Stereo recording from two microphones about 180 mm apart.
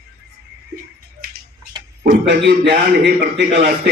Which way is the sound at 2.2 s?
75° right (ahead or behind).